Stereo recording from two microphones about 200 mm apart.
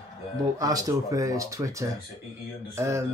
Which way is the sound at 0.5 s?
15° right (ahead or behind).